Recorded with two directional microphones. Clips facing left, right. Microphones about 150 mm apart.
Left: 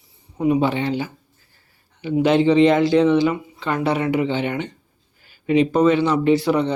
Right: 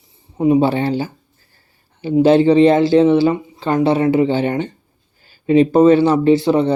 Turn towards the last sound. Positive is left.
turn(degrees=-25)  # may be behind; listen again after turning